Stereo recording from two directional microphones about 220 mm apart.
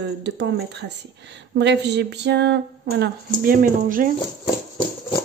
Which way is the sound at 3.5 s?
40° right (ahead or behind).